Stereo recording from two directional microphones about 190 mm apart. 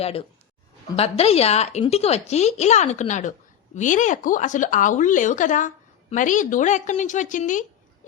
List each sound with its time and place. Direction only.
0.0 s a woman's voice: 30° left (ahead or behind)